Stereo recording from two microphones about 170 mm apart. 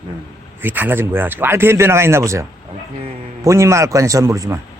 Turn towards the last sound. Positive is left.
turn(degrees=-15)  # may be behind; listen again after turning